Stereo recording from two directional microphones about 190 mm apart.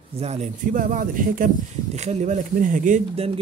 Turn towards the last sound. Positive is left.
turn(degrees=-30)  # may be behind; listen again after turning